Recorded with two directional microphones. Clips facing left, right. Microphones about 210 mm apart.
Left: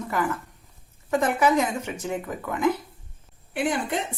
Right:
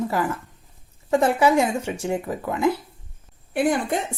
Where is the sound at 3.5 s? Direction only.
45° right (ahead or behind).